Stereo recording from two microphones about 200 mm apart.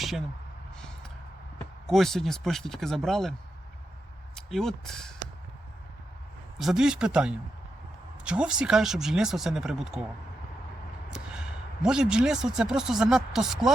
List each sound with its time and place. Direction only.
0.8 s a sound: 5° left (ahead or behind)
1.9 s speech: centre (ahead or behind)
4.4 s speech: centre (ahead or behind)
6.6 s speech: centre (ahead or behind)
11.1 s speech: 5° right (ahead or behind)